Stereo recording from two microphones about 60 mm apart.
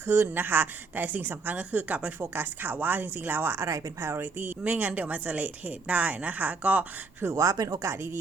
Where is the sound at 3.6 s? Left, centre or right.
Right.